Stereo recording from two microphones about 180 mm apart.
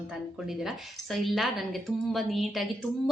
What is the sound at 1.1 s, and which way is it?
A woman's voice, centre (ahead or behind).